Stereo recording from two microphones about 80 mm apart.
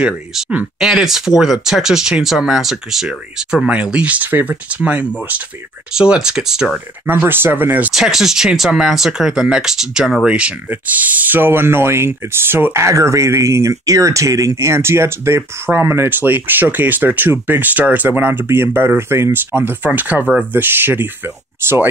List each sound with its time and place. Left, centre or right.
0.7 s speech: centre
7.1 s speech: right
7.9 s speech: centre; by 21.8 s right